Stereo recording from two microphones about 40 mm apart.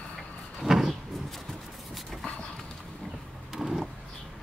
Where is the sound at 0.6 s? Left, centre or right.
Centre.